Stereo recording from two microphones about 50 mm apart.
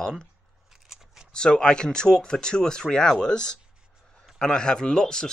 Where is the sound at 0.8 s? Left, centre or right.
Centre.